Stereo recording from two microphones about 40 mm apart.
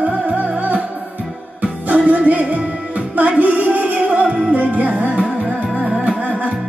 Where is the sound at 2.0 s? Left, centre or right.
Right.